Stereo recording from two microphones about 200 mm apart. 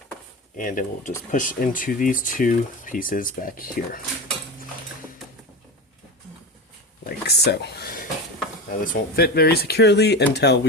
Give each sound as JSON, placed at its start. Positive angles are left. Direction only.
{"t": 0.5, "sound": "speech", "side_deg": 40}
{"t": 7.0, "sound": "a sound", "side_deg": 50}
{"t": 8.8, "sound": "speech", "side_deg": 45}